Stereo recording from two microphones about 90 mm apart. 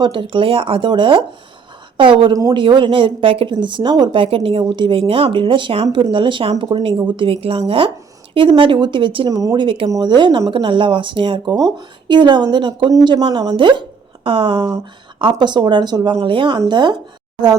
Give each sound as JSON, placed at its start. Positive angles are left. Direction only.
{"t": 0.0, "sound": "speech", "side_deg": -70}
{"t": 4.2, "sound": "a woman's voice", "side_deg": -90}
{"t": 9.3, "sound": "speech", "side_deg": -45}
{"t": 9.6, "sound": "speech", "side_deg": -75}
{"t": 10.0, "sound": "speech", "side_deg": -55}
{"t": 10.5, "sound": "speech", "side_deg": -70}
{"t": 12.0, "sound": "speech", "side_deg": -60}
{"t": 14.3, "sound": "a woman's voice", "side_deg": -85}
{"t": 15.2, "sound": "speech", "side_deg": -60}
{"t": 16.1, "sound": "speech", "side_deg": -70}
{"t": 16.6, "sound": "speech", "side_deg": -60}